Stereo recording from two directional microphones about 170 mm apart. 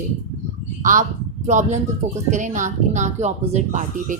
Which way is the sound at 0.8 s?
50° right (ahead or behind).